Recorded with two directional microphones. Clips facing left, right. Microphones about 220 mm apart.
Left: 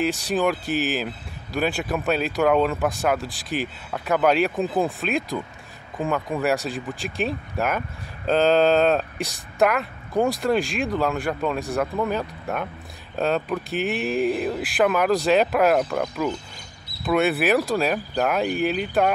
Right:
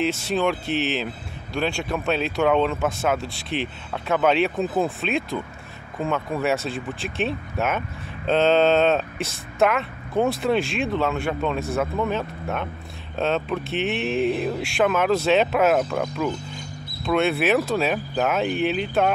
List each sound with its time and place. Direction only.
0.0 s speech: centre (ahead or behind)